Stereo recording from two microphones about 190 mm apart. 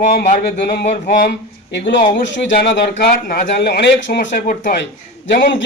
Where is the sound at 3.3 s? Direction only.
50° left (ahead or behind).